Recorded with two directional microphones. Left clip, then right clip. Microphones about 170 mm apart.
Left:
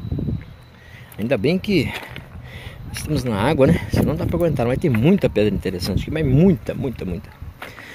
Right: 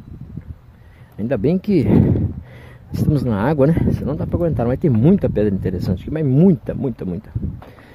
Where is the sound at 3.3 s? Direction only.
10° right (ahead or behind).